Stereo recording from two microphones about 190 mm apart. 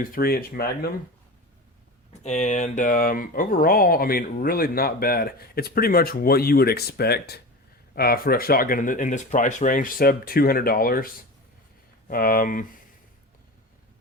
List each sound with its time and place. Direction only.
0.0 s speech: 50° left (ahead or behind)
2.2 s speech: 40° left (ahead or behind)